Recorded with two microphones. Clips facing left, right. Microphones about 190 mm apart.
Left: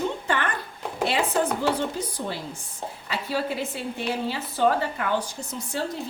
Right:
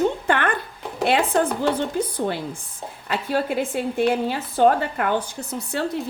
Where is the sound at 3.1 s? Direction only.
50° right (ahead or behind).